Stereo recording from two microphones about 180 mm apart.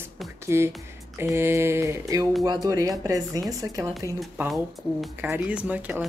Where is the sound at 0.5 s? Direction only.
15° right (ahead or behind).